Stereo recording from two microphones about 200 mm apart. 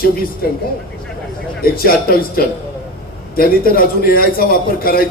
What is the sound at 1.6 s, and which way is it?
A man's voice, 50° left (ahead or behind).